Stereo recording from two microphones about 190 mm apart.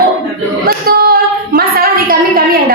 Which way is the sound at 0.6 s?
50° right (ahead or behind).